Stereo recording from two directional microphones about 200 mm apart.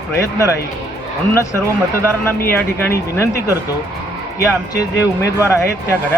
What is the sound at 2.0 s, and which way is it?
Speech, 10° left (ahead or behind).